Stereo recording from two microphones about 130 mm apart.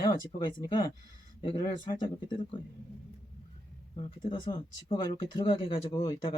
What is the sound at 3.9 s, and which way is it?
Speech, 40° left (ahead or behind).